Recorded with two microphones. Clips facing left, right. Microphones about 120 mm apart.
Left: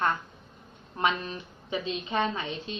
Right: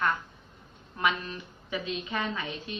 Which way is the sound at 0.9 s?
30° left (ahead or behind).